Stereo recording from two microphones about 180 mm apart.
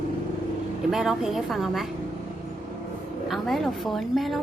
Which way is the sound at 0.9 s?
Centre (ahead or behind).